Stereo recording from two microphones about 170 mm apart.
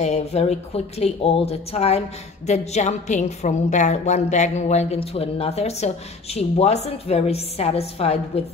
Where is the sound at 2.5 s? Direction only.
40° left (ahead or behind).